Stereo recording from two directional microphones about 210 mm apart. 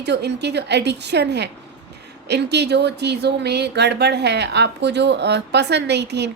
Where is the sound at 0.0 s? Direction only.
55° right (ahead or behind).